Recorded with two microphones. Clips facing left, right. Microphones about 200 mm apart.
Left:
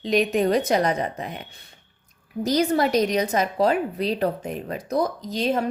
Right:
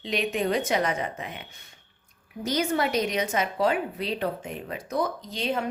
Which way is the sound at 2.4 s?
35° left (ahead or behind).